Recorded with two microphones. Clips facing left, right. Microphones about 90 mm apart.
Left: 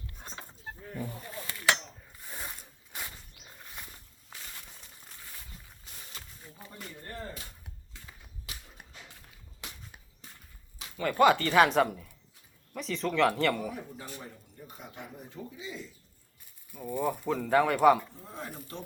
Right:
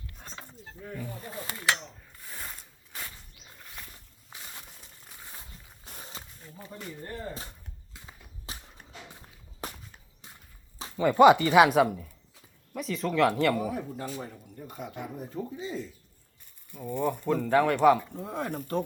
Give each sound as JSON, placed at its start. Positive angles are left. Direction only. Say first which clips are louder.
{"t": 1.3, "sound": "a sound", "louder": "right 3 dB", "side_deg": -30}
{"t": 2.2, "sound": "a sound", "louder": "even", "side_deg": 10}
{"t": 4.3, "sound": "a sound", "louder": "right 2 dB", "side_deg": -20}
{"t": 5.8, "sound": "walk", "louder": "right 9 dB", "side_deg": -40}
{"t": 8.5, "sound": "walk", "louder": "right 4 dB", "side_deg": -35}
{"t": 9.6, "sound": "a sound", "louder": "right 8 dB", "side_deg": -40}
{"t": 10.9, "sound": "speech", "louder": "right 5 dB", "side_deg": -20}
{"t": 13.7, "sound": "speech", "louder": "right 6 dB", "side_deg": -50}
{"t": 14.7, "sound": "speech", "louder": "right 7 dB", "side_deg": -55}
{"t": 15.3, "sound": "speech", "louder": "right 7 dB", "side_deg": -40}
{"t": 16.7, "sound": "speech", "louder": "right 2 dB", "side_deg": 5}
{"t": 18.2, "sound": "speech", "louder": "right 9 dB", "side_deg": -60}